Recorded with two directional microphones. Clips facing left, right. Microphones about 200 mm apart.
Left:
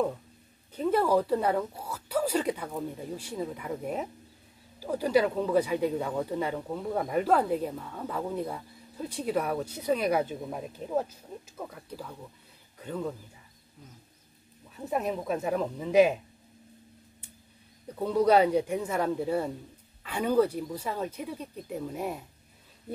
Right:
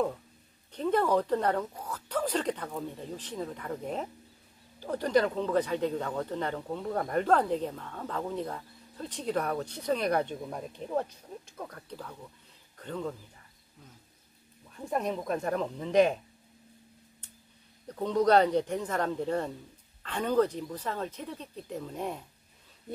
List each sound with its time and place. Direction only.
0.7 s speech: 5° left (ahead or behind)
14.7 s speech: 5° left (ahead or behind)
17.8 s speech: 10° left (ahead or behind)